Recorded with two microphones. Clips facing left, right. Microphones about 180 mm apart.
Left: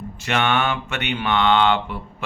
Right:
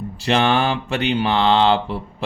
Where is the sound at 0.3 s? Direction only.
30° right (ahead or behind).